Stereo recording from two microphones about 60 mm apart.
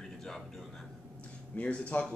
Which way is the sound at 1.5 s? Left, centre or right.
Left.